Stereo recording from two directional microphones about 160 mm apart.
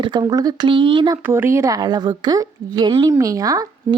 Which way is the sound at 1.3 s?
15° right (ahead or behind).